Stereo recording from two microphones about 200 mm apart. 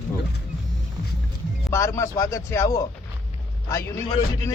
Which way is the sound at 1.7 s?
15° left (ahead or behind).